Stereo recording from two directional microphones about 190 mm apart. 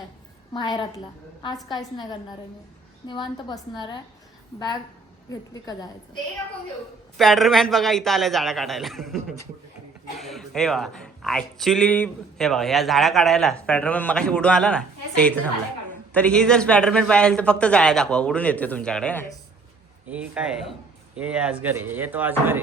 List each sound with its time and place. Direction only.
0.5 s a woman's voice: 25° left (ahead or behind)
5.3 s a woman's voice: 20° left (ahead or behind)
7.2 s speech: centre (ahead or behind)
20.1 s speech: 5° right (ahead or behind)